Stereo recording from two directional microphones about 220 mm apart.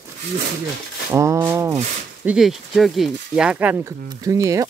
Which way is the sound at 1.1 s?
15° right (ahead or behind).